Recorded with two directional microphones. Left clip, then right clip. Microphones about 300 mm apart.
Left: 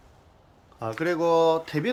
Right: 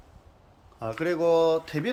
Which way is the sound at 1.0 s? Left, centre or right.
Centre.